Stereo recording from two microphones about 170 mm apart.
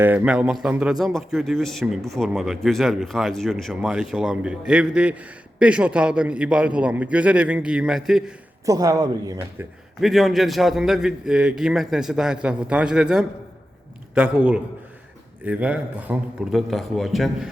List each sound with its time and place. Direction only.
0.0 s a man's voice: 10° right (ahead or behind)
8.6 s speech: 20° right (ahead or behind)
10.0 s a man's voice: centre (ahead or behind)